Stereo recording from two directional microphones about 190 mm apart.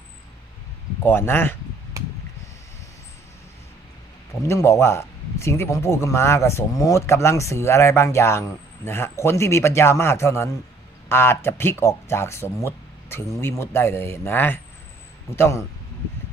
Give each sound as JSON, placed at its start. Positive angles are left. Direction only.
{"t": 1.0, "sound": "speech", "side_deg": 10}
{"t": 2.0, "sound": "a sound", "side_deg": -15}
{"t": 4.4, "sound": "speech", "side_deg": 15}